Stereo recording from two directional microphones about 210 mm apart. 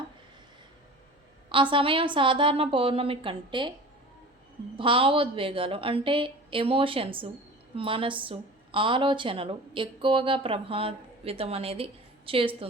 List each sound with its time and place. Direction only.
1.5 s a woman's voice: 25° right (ahead or behind)
4.8 s a woman's voice: 25° right (ahead or behind)